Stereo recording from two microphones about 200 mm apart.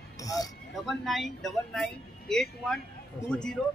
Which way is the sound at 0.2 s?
15° left (ahead or behind).